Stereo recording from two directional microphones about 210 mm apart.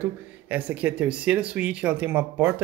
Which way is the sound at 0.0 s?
10° right (ahead or behind).